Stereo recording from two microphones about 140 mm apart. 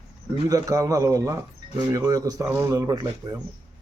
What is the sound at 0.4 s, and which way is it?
Speech, 25° right (ahead or behind).